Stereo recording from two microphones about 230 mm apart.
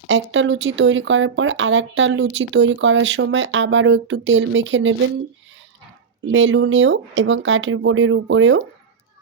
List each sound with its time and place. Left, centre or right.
0.1 s speech: right
6.2 s speech: right